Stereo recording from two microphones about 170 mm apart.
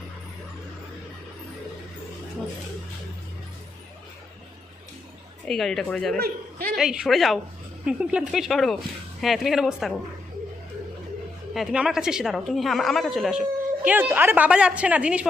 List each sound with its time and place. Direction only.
5.5 s a woman's voice: centre (ahead or behind)
6.1 s a man's voice: 60° right (ahead or behind)
6.7 s a woman's voice: 5° right (ahead or behind)
11.5 s a woman's voice: 5° right (ahead or behind)